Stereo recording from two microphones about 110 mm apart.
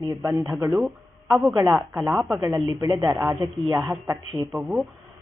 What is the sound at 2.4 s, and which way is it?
Speech, 30° right (ahead or behind).